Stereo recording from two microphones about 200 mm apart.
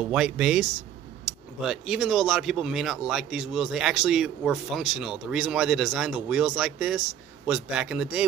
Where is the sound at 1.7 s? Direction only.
Centre (ahead or behind).